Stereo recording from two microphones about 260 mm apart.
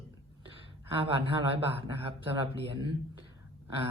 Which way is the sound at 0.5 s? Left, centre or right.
Centre.